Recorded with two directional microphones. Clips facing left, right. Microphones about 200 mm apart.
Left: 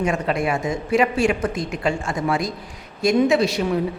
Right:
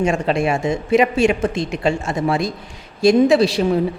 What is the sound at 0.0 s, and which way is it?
A woman's voice, 25° right (ahead or behind).